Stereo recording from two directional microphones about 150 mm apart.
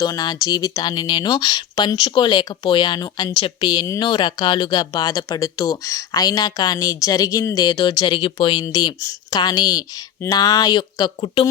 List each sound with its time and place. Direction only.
0.0 s speech: 25° left (ahead or behind)